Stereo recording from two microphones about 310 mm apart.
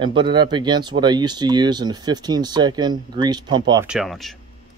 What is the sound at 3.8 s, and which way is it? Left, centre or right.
Speech, centre.